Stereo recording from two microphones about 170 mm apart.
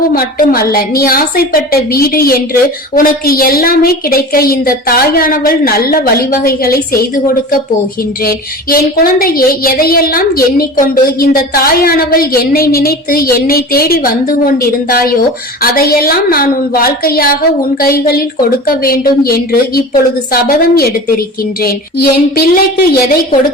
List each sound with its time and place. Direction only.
0.1 s a woman's voice: 60° left (ahead or behind)